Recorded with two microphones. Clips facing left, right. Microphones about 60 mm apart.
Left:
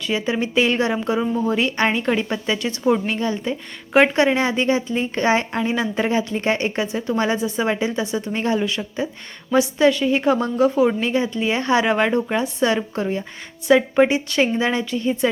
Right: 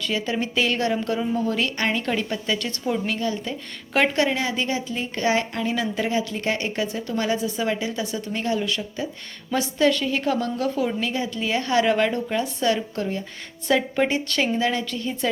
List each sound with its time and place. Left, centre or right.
0.0 s a woman's voice: left
2.8 s a woman's voice: left